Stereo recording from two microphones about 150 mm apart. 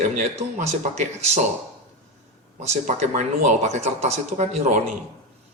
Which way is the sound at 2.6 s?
50° right (ahead or behind).